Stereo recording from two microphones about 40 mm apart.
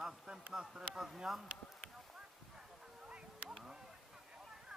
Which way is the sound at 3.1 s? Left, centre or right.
Right.